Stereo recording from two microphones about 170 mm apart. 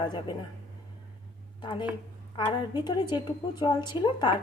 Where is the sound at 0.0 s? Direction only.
25° left (ahead or behind).